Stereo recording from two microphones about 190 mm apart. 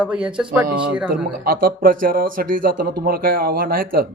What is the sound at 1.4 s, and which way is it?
Speech, 50° right (ahead or behind).